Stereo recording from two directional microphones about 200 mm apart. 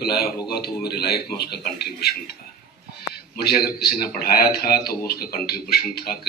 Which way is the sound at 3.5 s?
50° left (ahead or behind).